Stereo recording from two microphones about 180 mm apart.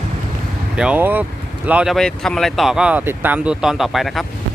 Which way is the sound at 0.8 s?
10° right (ahead or behind).